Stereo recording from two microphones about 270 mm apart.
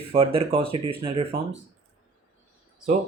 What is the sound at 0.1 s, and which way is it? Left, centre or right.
Speech, right.